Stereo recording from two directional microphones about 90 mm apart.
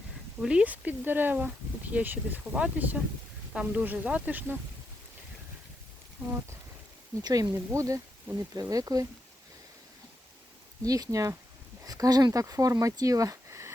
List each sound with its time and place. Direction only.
0.4 s speech: 15° right (ahead or behind)
6.2 s speech: 15° right (ahead or behind)
7.2 s speech: 50° right (ahead or behind)
7.5 s speech: 35° right (ahead or behind)
10.8 s speech: 40° right (ahead or behind)